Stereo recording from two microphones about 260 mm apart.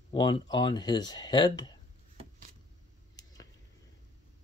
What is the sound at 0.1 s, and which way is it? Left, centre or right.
Speech, centre.